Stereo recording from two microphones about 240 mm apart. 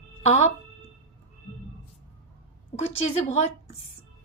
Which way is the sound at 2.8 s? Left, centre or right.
Left.